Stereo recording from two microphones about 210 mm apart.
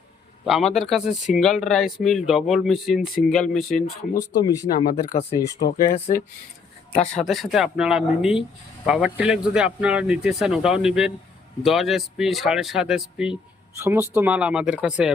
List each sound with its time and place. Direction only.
0.4 s speech: centre (ahead or behind)
3.7 s speech: 45° left (ahead or behind)
4.4 s speech: 20° left (ahead or behind)
5.5 s speech: 45° left (ahead or behind)
7.2 s speech: centre (ahead or behind)